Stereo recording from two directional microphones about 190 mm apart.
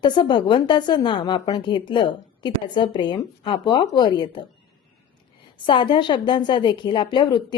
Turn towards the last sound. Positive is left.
turn(degrees=25)  # may be behind; listen again after turning